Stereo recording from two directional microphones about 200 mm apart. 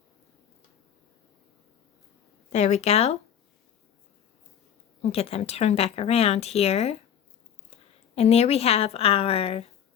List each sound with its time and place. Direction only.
2.5 s speech: 35° left (ahead or behind)
5.0 s speech: 30° left (ahead or behind)
8.1 s speech: 30° left (ahead or behind)